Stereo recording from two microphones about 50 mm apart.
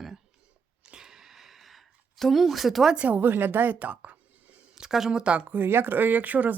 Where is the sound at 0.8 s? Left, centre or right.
Centre.